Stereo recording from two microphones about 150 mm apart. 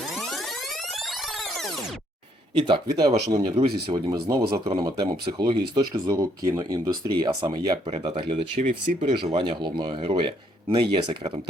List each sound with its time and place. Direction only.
2.6 s speech: 35° right (ahead or behind)
3.5 s speech: 40° right (ahead or behind)
3.9 s speech: 25° right (ahead or behind)
7.9 s speech: 45° right (ahead or behind)
9.1 s speech: 35° right (ahead or behind)